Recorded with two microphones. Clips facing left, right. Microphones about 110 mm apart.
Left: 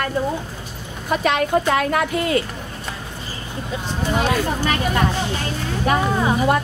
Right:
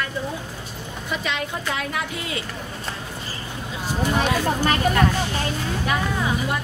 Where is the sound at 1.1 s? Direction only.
55° left (ahead or behind).